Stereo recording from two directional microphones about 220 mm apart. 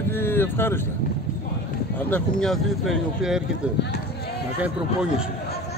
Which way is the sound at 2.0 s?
5° left (ahead or behind).